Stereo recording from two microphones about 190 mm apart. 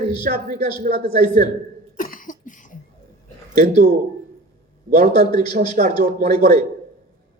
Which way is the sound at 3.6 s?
45° right (ahead or behind).